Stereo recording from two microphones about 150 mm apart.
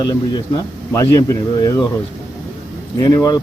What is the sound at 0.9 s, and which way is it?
Speech, 20° left (ahead or behind).